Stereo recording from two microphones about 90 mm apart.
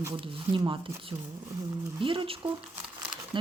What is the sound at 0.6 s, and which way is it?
Speech, 85° right.